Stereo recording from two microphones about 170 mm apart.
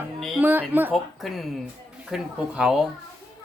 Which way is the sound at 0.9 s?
Centre (ahead or behind).